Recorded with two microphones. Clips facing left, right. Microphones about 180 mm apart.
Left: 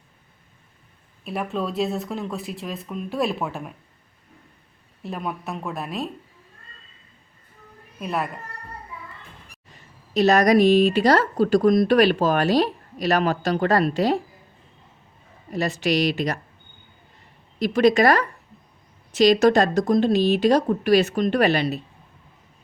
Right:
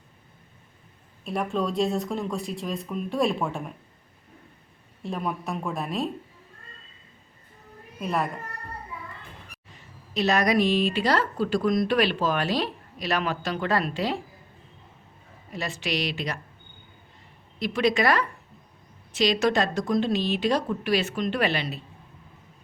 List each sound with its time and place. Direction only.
1.2 s speech: 5° left (ahead or behind)
5.0 s speech: centre (ahead or behind)
7.9 s speech: centre (ahead or behind)
10.2 s speech: 40° left (ahead or behind)
15.5 s speech: 40° left (ahead or behind)
17.6 s speech: 40° left (ahead or behind)